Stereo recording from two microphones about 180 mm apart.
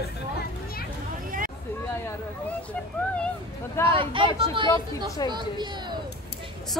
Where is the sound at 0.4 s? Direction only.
55° left (ahead or behind).